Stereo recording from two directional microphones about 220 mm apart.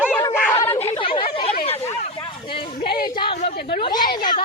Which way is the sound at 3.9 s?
20° left (ahead or behind).